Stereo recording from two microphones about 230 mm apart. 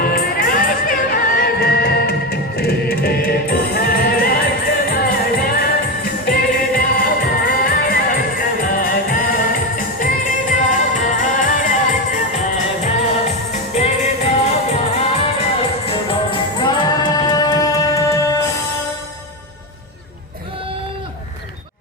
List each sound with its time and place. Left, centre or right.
0.0 s music: left
15.9 s music: left